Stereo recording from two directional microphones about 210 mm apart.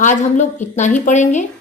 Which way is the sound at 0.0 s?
35° left (ahead or behind).